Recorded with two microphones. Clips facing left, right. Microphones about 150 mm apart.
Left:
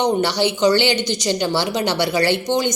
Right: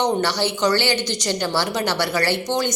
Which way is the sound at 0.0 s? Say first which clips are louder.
Left 3 dB; 15° left (ahead or behind).